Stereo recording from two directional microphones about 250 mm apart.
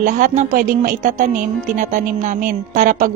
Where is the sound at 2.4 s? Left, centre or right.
Right.